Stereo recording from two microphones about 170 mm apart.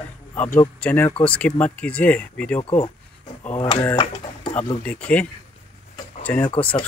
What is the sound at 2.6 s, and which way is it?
Speech, 35° left (ahead or behind).